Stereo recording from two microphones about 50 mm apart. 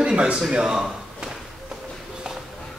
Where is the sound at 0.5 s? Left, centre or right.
Centre.